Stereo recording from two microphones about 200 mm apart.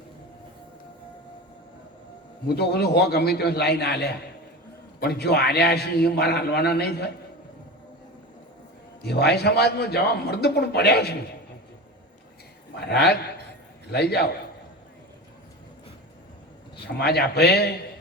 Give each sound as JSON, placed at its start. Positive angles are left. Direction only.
{"t": 2.5, "sound": "a man's voice", "side_deg": 55}
{"t": 9.0, "sound": "a man's voice", "side_deg": 55}
{"t": 12.7, "sound": "a man's voice", "side_deg": 55}
{"t": 16.8, "sound": "a man's voice", "side_deg": 55}